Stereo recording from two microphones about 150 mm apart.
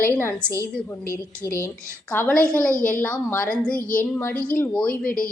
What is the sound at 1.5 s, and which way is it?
A woman's voice, 15° left (ahead or behind).